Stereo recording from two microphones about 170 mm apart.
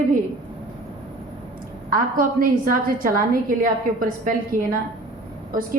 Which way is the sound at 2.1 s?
55° right (ahead or behind).